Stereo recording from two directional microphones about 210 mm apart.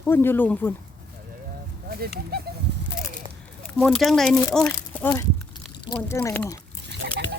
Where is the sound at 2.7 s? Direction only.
55° right (ahead or behind).